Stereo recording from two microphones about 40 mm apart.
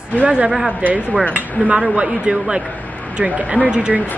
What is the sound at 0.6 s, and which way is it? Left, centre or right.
Speech, right.